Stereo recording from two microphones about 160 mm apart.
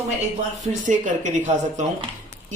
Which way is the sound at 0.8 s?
50° right (ahead or behind).